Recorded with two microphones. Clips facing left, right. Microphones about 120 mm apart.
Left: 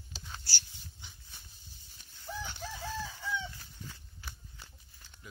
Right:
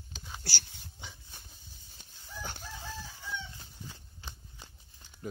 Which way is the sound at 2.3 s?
75° left (ahead or behind).